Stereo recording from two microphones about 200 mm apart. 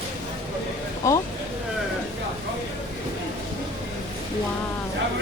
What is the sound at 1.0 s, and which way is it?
Speech, 15° left (ahead or behind).